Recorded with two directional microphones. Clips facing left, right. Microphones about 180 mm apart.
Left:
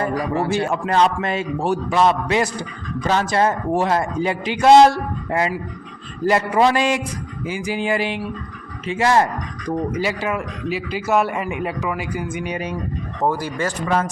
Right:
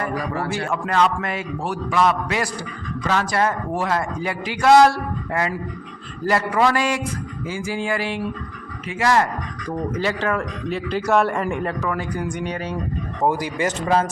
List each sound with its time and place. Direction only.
0.1 s a man's voice: 20° left (ahead or behind)
9.9 s a man's voice: 10° left (ahead or behind)
13.2 s speech: 15° right (ahead or behind)
13.8 s speech: 35° right (ahead or behind)